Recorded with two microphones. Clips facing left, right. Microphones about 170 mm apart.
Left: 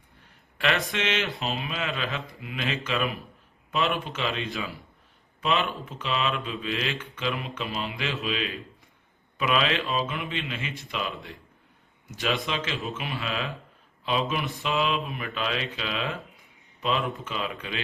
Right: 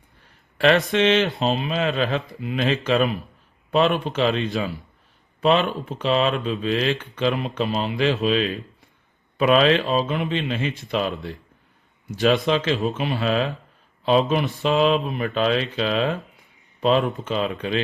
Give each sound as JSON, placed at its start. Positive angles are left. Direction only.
{"t": 0.9, "sound": "speech", "side_deg": -35}